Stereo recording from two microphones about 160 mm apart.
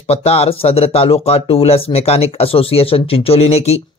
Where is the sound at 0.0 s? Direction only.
40° left (ahead or behind).